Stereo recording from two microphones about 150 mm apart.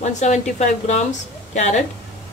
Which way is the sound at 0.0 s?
50° left (ahead or behind).